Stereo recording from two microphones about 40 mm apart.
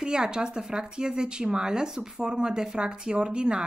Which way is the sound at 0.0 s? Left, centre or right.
Centre.